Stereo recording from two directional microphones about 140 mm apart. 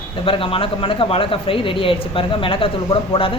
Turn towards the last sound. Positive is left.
turn(degrees=40)  # may be behind; listen again after turning